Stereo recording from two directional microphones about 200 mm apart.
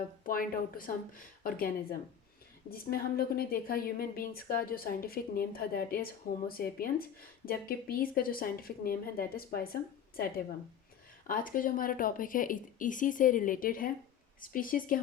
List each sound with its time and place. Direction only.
0.3 s a woman's voice: 45° left (ahead or behind)
11.3 s a woman's voice: 45° left (ahead or behind)